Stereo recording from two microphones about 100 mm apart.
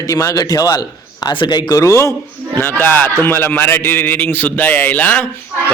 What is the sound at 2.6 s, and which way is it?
A man's voice, 20° left (ahead or behind).